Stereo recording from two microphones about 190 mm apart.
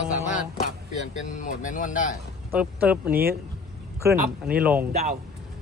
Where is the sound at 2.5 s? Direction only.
5° right (ahead or behind).